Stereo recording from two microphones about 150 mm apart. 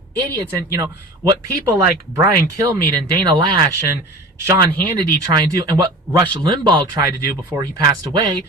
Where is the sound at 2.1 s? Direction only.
20° right (ahead or behind).